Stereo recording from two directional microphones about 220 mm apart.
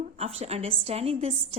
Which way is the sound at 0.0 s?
30° right (ahead or behind).